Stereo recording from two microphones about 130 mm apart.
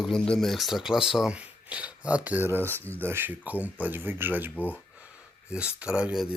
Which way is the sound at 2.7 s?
15° left (ahead or behind).